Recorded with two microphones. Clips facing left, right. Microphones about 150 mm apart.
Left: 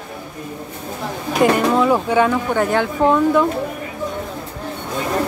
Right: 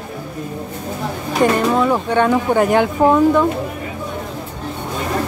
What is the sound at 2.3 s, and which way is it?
Speech, 15° right (ahead or behind).